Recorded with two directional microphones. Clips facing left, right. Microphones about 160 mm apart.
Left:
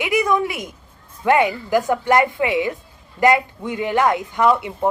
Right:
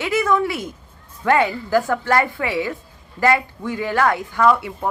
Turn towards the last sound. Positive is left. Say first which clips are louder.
# even
turn(degrees=20)  # may be behind; listen again after turning